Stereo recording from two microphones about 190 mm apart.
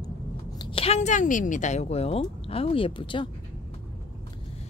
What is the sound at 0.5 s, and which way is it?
Speech, 25° left (ahead or behind).